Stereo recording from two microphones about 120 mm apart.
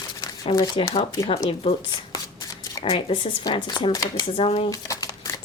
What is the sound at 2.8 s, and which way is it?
Speech, 45° left (ahead or behind).